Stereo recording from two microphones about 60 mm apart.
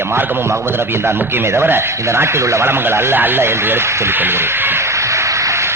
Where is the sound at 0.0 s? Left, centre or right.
Right.